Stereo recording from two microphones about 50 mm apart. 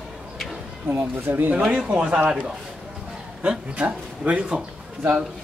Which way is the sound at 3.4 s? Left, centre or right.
Right.